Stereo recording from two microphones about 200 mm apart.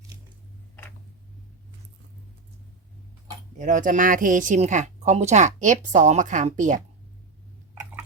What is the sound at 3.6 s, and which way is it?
Speech, 40° right (ahead or behind).